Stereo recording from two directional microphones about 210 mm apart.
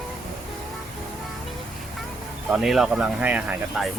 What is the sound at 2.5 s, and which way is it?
Speech, centre (ahead or behind).